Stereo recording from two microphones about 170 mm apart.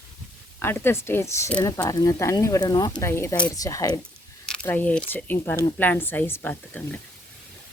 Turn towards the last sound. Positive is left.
turn(degrees=10)  # may be behind; listen again after turning